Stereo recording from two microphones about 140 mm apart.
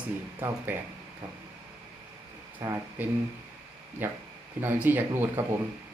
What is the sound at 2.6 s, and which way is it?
A man's voice, 20° right (ahead or behind).